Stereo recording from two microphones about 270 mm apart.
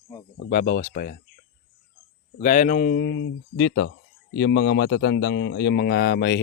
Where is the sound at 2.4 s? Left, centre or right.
Left.